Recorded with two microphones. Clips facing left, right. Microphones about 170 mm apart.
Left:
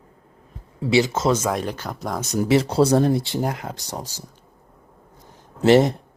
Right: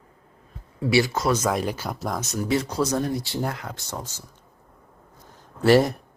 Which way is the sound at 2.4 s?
85° left.